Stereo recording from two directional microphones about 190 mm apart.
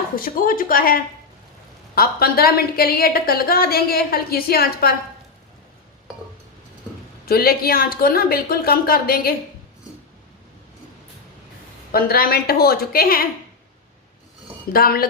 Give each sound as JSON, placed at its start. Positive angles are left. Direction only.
{"t": 0.2, "sound": "a woman's voice", "side_deg": 45}
{"t": 7.3, "sound": "a woman's voice", "side_deg": 50}
{"t": 11.9, "sound": "a woman's voice", "side_deg": 50}
{"t": 14.7, "sound": "a woman's voice", "side_deg": 50}